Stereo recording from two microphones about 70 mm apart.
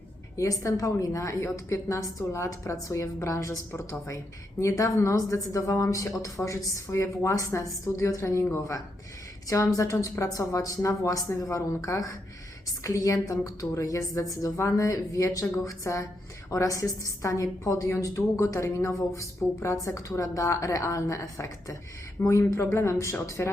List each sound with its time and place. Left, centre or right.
0.3 s speech: left